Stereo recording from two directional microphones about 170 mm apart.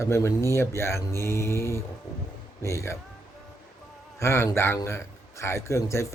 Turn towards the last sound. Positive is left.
turn(degrees=15)  # may be behind; listen again after turning